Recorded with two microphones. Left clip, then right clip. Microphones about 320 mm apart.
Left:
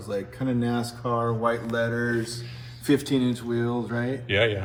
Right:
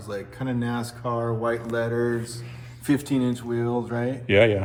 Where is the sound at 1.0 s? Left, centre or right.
Right.